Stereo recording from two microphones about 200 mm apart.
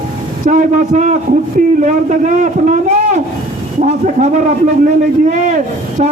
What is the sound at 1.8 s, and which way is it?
Speech, 40° right (ahead or behind).